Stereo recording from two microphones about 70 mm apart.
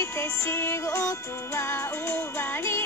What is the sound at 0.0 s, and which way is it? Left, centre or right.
Music, left.